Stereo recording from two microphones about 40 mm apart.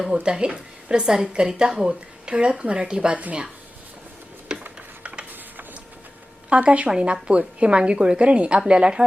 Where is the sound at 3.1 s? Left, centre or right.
Right.